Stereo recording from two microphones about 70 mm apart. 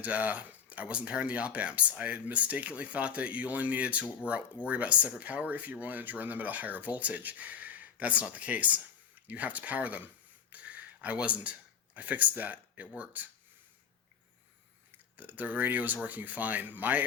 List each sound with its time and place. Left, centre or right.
0.0 s speech: right
10.5 s a sound: right
11.9 s speech: right
15.1 s speech: right